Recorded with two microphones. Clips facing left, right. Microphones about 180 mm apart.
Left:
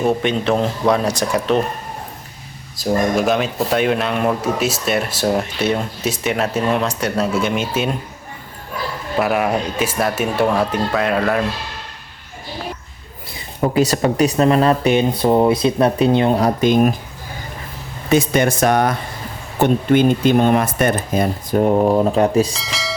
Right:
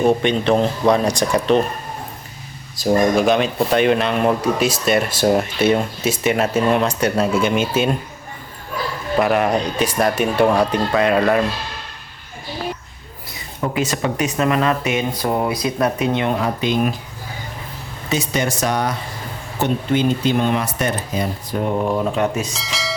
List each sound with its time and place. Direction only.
0.0 s speech: 5° left (ahead or behind)
2.7 s speech: centre (ahead or behind)
9.1 s speech: 5° left (ahead or behind)
13.6 s speech: 35° left (ahead or behind)
18.1 s speech: 55° left (ahead or behind); by 22.5 s 35° left (ahead or behind)
22.5 s a sound: centre (ahead or behind)